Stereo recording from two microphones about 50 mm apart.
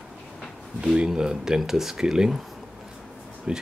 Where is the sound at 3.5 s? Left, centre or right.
Centre.